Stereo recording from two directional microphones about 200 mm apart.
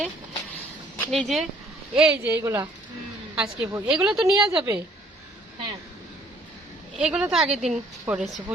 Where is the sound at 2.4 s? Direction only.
10° right (ahead or behind).